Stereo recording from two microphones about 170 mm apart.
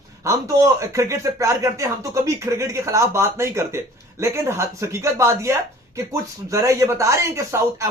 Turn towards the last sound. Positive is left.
turn(degrees=-15)  # may be behind; listen again after turning